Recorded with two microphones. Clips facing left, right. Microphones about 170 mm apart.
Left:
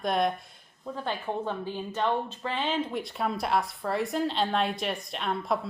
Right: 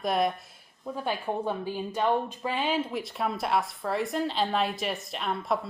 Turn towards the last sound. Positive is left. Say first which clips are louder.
# even
turn(degrees=0)  # may be behind; listen again after turning